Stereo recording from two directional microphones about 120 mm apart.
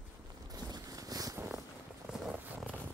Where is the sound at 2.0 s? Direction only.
Centre (ahead or behind).